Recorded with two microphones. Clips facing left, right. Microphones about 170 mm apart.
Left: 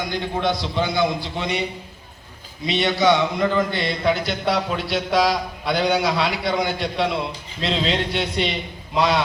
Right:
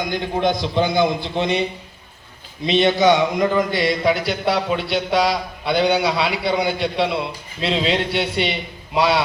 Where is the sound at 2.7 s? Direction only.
20° right (ahead or behind).